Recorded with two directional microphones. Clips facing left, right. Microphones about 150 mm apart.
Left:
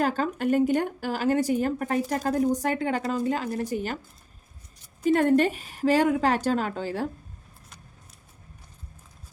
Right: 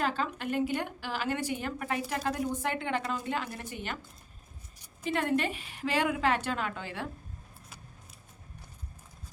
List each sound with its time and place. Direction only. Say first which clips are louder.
0.0 s speech: left 7 dB; 40° left (ahead or behind)
5.0 s speech: left 9 dB; 45° left (ahead or behind)